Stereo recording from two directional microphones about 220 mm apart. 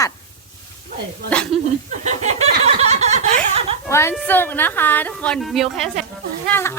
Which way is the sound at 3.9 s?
10° left (ahead or behind).